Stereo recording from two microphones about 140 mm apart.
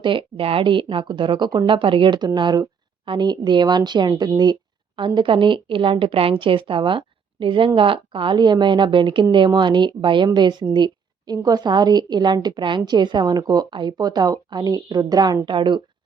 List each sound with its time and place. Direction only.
0.0 s a woman's voice: 35° right (ahead or behind)